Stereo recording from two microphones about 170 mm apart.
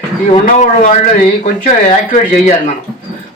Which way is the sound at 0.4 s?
50° left (ahead or behind).